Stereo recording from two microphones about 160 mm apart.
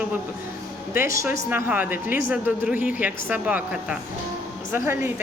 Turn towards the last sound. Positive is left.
turn(degrees=-15)  # may be behind; listen again after turning